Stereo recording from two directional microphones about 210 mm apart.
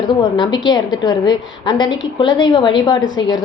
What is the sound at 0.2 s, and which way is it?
A woman's voice, 20° left (ahead or behind).